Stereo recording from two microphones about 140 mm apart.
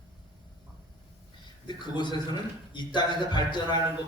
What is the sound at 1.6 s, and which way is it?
A man's voice, 35° left (ahead or behind).